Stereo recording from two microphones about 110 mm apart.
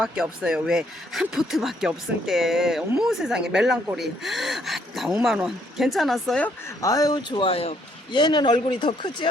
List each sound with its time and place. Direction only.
0.0 s speech: 5° right (ahead or behind)
6.8 s a man's voice: 35° left (ahead or behind)